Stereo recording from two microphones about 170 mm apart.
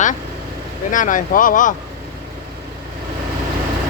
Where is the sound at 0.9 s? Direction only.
50° left (ahead or behind).